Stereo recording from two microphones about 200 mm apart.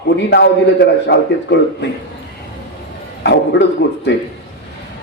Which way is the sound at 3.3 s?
60° left (ahead or behind).